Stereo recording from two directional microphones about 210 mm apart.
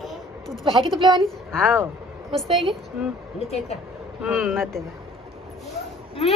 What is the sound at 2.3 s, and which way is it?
Speech, centre (ahead or behind).